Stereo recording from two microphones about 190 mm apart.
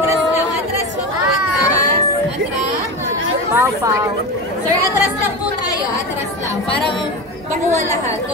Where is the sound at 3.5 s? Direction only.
15° right (ahead or behind).